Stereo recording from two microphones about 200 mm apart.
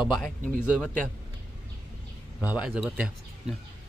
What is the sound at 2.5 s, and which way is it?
Speech, 5° right (ahead or behind).